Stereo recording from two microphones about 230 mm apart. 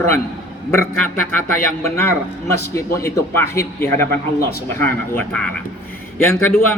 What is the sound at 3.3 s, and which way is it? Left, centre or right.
A man's voice, centre.